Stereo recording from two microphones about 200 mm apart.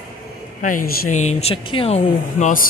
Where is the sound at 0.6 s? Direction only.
40° left (ahead or behind).